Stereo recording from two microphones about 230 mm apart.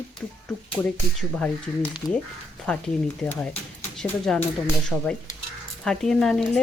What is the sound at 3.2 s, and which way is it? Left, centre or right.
Speech, centre.